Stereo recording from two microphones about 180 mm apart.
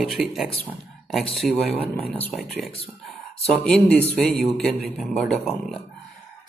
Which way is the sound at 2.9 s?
Centre (ahead or behind).